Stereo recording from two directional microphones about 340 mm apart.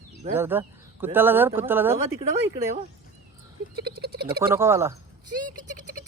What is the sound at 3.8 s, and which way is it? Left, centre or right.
Speech, right.